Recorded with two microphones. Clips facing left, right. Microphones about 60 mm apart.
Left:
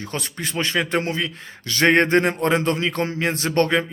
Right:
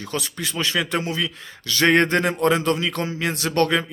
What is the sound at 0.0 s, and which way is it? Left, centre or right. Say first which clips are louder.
Speech: right 1 dB; left.